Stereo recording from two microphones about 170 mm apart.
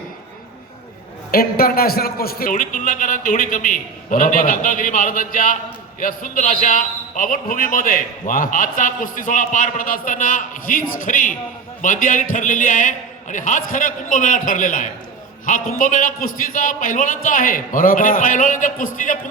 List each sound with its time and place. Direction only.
1.3 s a man's voice: 60° left (ahead or behind)